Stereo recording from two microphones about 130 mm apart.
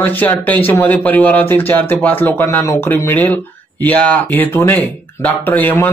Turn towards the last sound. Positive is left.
turn(degrees=15)  # may be behind; listen again after turning